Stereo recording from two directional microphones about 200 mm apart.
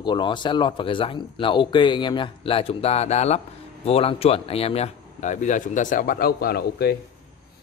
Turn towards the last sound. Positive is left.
turn(degrees=50)  # may be behind; listen again after turning